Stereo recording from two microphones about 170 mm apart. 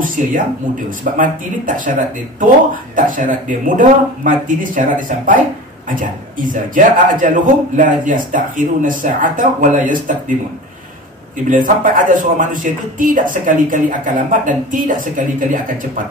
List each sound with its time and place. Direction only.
0.0 s speech: 50° right (ahead or behind)
3.0 s speech: 50° right (ahead or behind)
11.5 s speech: 55° right (ahead or behind)